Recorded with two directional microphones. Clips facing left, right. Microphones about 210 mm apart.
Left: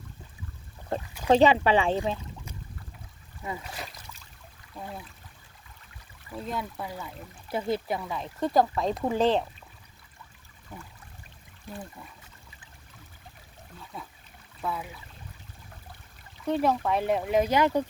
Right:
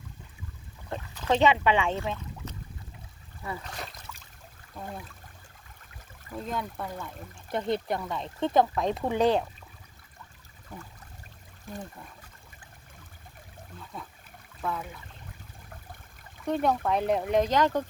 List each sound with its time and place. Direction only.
1.3 s speech: 35° left (ahead or behind)
2.4 s boat: 10° left (ahead or behind)
3.4 s speech: 15° left (ahead or behind)
3.7 s speech: 5° left (ahead or behind)
4.8 s a sound: 15° left (ahead or behind)
6.3 s speech: 5° left (ahead or behind)
14.6 s speech: 5° left (ahead or behind)
16.5 s speech: centre (ahead or behind)